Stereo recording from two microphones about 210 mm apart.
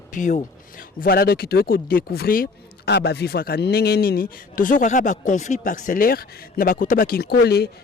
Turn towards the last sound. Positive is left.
turn(degrees=50)  # may be behind; listen again after turning